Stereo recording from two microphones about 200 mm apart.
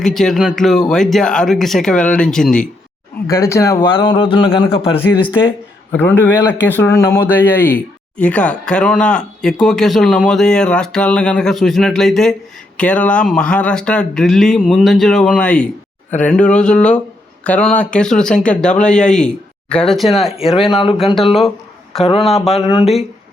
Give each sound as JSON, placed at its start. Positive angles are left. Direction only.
{"t": 0.0, "sound": "speech", "side_deg": 0}
{"t": 3.2, "sound": "a man's voice", "side_deg": 15}
{"t": 5.9, "sound": "a man's voice", "side_deg": 10}
{"t": 20.4, "sound": "a man's voice", "side_deg": 30}
{"t": 22.5, "sound": "speech", "side_deg": 30}